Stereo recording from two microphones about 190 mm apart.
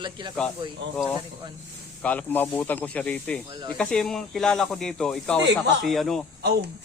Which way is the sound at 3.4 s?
25° right (ahead or behind).